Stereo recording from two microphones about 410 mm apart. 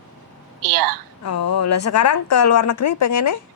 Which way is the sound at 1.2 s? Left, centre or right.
Left.